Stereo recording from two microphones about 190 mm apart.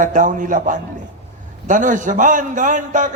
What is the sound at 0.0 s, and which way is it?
A man's voice, 45° right (ahead or behind).